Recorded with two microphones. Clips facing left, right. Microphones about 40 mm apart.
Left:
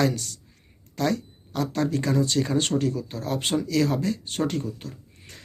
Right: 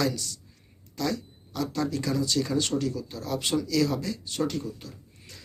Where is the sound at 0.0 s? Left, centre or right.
Left.